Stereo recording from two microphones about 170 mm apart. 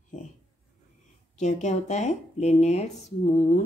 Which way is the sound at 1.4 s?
45° left (ahead or behind).